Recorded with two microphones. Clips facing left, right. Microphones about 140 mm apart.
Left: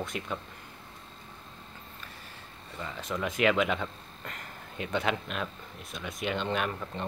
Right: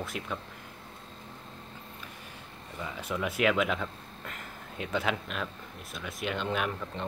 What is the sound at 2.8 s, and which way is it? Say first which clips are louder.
Speech: even; 10° right (ahead or behind).